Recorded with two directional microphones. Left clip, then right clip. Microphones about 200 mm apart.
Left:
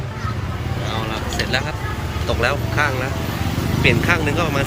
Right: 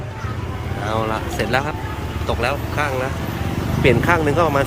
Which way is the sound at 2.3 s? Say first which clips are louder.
Left 1 dB; 10° right (ahead or behind).